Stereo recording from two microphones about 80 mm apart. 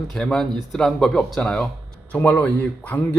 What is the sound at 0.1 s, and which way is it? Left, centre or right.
A man's voice, centre.